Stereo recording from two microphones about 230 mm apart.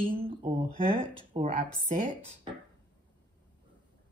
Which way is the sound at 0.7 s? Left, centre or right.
Centre.